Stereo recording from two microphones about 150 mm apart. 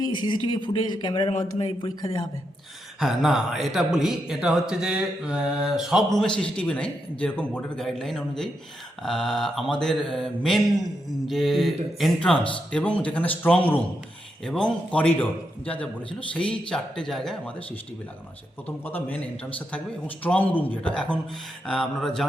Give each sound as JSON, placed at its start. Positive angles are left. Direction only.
{"t": 0.1, "sound": "a man's voice", "side_deg": 30}
{"t": 1.3, "sound": "speech", "side_deg": 50}
{"t": 1.6, "sound": "a man's voice", "side_deg": 25}
{"t": 3.0, "sound": "a man's voice", "side_deg": 0}
{"t": 18.9, "sound": "a man's voice", "side_deg": 10}